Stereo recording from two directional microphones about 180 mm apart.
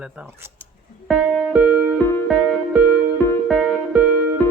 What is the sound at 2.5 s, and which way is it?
Music, 5° right (ahead or behind).